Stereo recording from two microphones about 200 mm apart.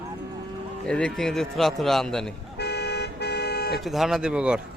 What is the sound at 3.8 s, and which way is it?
Speech, centre (ahead or behind).